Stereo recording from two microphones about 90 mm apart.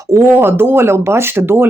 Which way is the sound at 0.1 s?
30° right (ahead or behind).